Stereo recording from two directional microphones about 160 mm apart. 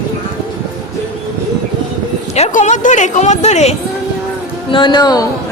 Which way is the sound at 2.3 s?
45° left (ahead or behind).